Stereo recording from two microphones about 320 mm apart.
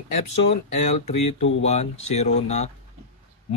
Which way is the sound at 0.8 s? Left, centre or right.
Left.